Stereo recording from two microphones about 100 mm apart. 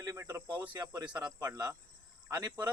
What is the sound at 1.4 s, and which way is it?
Speech, 30° right (ahead or behind).